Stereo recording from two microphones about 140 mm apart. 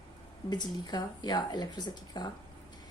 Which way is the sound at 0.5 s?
30° left (ahead or behind).